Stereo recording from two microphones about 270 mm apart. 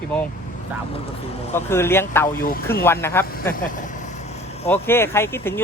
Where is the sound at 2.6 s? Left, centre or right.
Centre.